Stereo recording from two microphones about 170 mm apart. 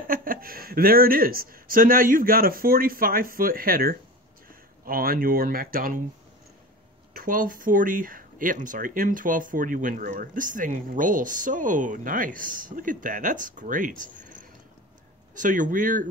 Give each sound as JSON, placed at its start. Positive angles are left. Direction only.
{"t": 0.1, "sound": "speech", "side_deg": -55}
{"t": 7.2, "sound": "speech", "side_deg": -55}